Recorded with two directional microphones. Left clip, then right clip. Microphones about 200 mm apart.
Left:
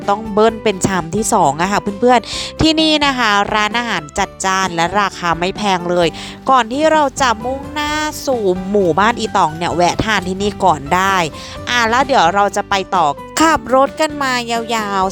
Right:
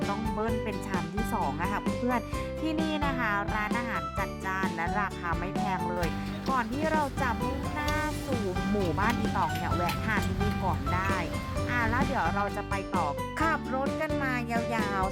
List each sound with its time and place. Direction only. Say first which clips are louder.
0.3 s speech: left 18 dB; 40° left (ahead or behind)
7.8 s music: left 13 dB; 35° left (ahead or behind)
9.0 s speech: left 15 dB; 35° left (ahead or behind)